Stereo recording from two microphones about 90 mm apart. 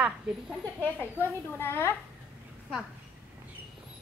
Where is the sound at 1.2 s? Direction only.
25° left (ahead or behind).